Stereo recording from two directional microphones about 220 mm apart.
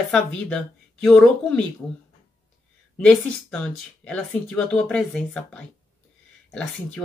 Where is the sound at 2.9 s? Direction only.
5° left (ahead or behind).